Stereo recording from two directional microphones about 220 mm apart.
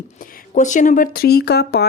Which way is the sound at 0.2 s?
40° left (ahead or behind).